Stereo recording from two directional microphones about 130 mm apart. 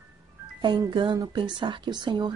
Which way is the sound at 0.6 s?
35° right (ahead or behind).